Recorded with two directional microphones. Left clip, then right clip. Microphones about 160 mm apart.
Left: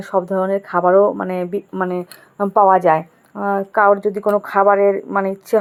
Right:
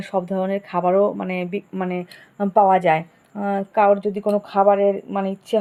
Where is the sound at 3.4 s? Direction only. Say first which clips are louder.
Left 3 dB; 15° right (ahead or behind).